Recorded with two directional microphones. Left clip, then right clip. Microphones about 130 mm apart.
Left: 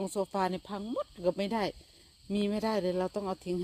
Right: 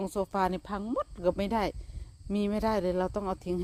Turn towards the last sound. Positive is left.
turn(degrees=-20)  # may be behind; listen again after turning